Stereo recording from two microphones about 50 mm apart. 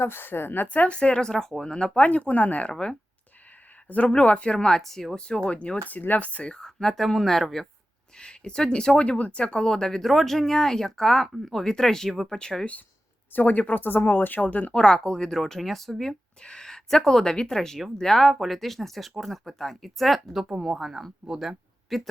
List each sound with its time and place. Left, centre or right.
0.0 s a woman's voice: left
0.7 s speech: left
2.0 s speech: left
3.8 s speech: left; by 5.1 s centre
5.1 s speech: centre
5.9 s speech: left
6.6 s speech: centre
8.2 s speech: centre
13.3 s speech: left
14.7 s speech: centre